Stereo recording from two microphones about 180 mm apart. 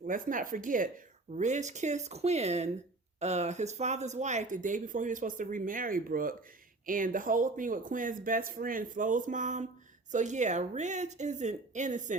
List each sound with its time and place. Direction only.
0.1 s speech: 50° right (ahead or behind)